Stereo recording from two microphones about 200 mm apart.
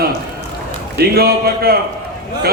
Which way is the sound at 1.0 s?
50° right (ahead or behind).